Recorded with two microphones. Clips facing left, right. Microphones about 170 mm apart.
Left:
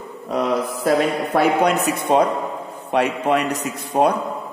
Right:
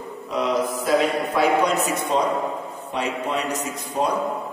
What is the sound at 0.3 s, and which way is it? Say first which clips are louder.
A man's voice: left 2 dB; 60° left (ahead or behind).